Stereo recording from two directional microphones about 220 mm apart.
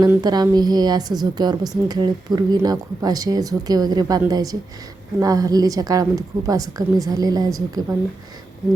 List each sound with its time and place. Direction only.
0.0 s a woman's voice: 15° right (ahead or behind)